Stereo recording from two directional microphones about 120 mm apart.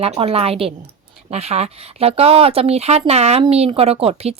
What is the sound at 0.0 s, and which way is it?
Speech, 55° right (ahead or behind).